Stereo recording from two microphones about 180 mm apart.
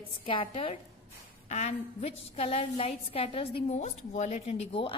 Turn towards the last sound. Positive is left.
turn(degrees=35)  # may be behind; listen again after turning